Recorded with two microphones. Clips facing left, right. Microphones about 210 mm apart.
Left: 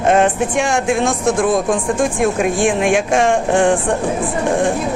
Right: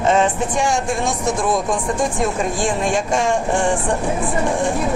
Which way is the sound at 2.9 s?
55° left (ahead or behind).